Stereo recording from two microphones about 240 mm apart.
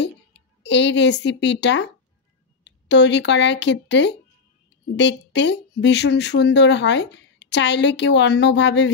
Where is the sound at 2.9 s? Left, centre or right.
Left.